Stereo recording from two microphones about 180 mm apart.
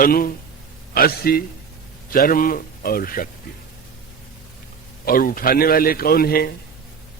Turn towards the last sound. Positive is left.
turn(degrees=55)  # may be behind; listen again after turning